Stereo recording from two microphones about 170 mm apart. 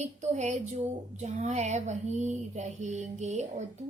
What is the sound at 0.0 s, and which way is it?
A woman's voice, 40° right (ahead or behind).